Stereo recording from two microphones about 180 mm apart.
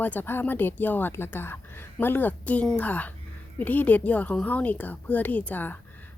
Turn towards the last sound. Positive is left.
turn(degrees=10)  # may be behind; listen again after turning